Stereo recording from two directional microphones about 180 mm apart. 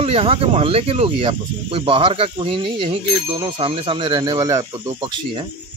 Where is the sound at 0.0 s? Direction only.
30° right (ahead or behind).